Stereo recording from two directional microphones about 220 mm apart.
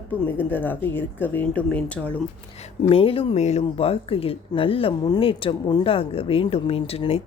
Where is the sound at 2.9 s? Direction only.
25° left (ahead or behind).